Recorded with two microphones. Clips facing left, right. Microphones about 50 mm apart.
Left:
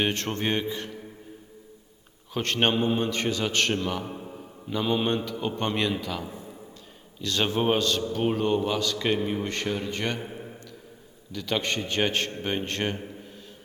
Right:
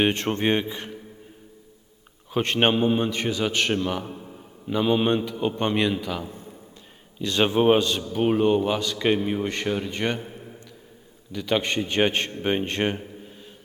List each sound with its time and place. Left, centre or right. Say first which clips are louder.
0.0 s a man's voice: right 5 dB; right
2.3 s a man's voice: right 3 dB; centre
4.1 s a man's voice: left 1 dB; centre
4.7 s a man's voice: right 4 dB; centre
7.2 s a man's voice: right 5 dB; centre
10.2 s a sound: left 1 dB; centre
11.3 s a man's voice: right 4 dB; centre